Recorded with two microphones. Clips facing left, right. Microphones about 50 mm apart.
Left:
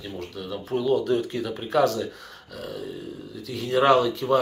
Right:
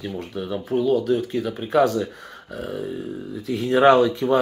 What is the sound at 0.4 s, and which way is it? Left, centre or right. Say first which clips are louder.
Speech: right 5 dB; centre.